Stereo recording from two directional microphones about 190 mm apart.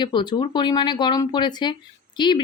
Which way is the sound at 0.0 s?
25° left (ahead or behind).